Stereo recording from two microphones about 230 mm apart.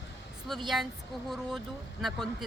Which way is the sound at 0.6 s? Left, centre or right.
Centre.